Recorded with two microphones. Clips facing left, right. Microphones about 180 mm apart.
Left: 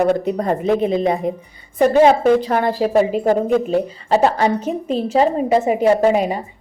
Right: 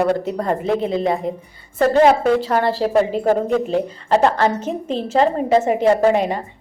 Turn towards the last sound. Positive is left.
turn(degrees=10)  # may be behind; listen again after turning